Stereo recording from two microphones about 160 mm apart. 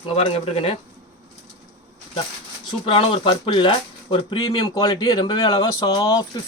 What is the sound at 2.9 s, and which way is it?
Speech, 35° left (ahead or behind).